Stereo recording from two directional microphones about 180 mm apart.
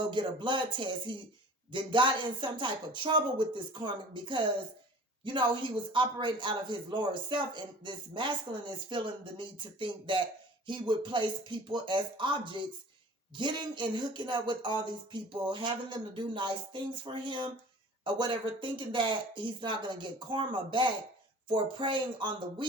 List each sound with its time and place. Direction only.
0.1 s a woman's voice: 25° right (ahead or behind)